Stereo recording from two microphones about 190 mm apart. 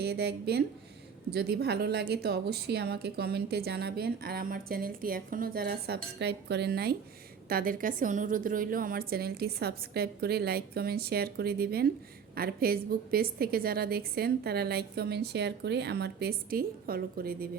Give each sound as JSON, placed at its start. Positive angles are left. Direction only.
{"t": 0.0, "sound": "a woman's voice", "side_deg": -60}